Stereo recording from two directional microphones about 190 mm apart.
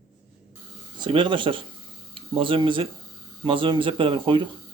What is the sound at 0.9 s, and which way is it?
Speech, 25° right (ahead or behind).